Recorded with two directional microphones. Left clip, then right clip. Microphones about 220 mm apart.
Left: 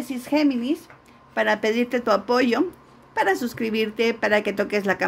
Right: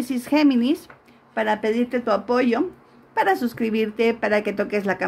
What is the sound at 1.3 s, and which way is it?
Speech, 5° left (ahead or behind).